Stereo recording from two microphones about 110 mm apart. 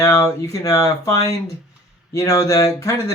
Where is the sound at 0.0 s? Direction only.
30° left (ahead or behind).